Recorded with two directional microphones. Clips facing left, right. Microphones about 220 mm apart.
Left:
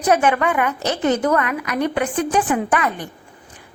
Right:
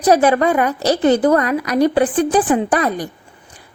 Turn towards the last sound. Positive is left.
turn(degrees=-35)  # may be behind; listen again after turning